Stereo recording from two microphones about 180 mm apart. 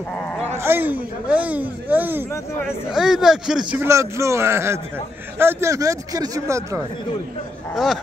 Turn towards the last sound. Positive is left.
turn(degrees=0)  # may be behind; listen again after turning